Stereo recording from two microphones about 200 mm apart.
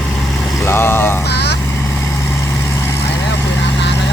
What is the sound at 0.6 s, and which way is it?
Vehicle, 10° left (ahead or behind).